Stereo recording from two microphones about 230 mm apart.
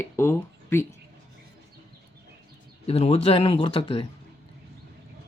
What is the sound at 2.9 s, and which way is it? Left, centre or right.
Speech, left.